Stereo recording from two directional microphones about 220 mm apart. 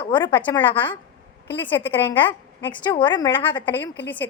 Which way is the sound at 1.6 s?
10° left (ahead or behind).